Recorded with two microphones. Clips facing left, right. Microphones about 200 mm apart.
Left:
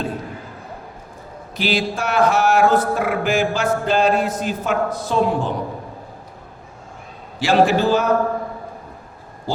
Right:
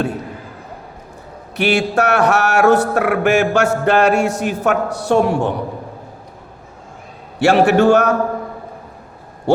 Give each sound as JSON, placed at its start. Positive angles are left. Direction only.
{"t": 1.5, "sound": "music", "side_deg": -70}
{"t": 7.4, "sound": "music", "side_deg": -65}